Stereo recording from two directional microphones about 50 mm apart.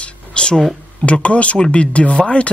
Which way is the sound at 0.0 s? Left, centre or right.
Centre.